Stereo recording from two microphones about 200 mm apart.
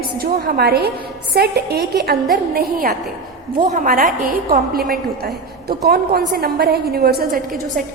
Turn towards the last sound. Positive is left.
turn(degrees=-50)  # may be behind; listen again after turning